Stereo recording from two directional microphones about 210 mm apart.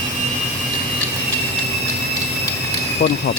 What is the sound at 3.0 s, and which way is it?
Speech, 50° left (ahead or behind).